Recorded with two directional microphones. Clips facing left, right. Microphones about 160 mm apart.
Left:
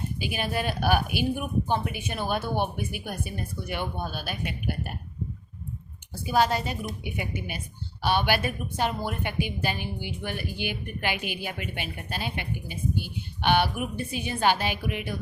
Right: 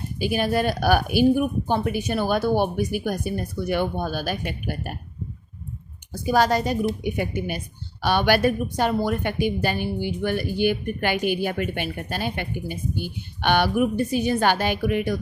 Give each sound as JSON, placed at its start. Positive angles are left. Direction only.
{"t": 0.2, "sound": "a woman's voice", "side_deg": -40}
{"t": 6.2, "sound": "a woman's voice", "side_deg": -40}